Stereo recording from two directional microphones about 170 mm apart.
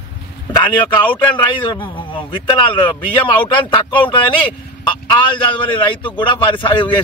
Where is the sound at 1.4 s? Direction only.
30° left (ahead or behind).